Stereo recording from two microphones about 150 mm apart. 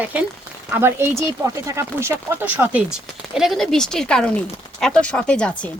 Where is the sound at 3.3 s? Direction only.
Centre (ahead or behind).